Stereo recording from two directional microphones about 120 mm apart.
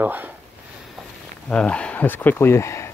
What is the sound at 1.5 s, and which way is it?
Speech, 10° left (ahead or behind).